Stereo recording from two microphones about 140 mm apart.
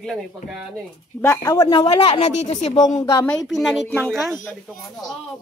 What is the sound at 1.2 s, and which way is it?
Speech, 20° left (ahead or behind).